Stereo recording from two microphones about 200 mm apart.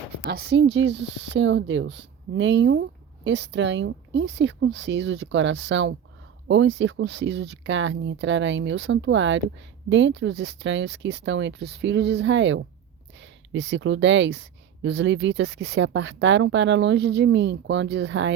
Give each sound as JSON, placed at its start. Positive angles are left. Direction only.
{"t": 0.3, "sound": "speech", "side_deg": -55}